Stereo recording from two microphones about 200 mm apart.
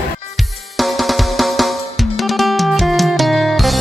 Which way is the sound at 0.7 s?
Centre (ahead or behind).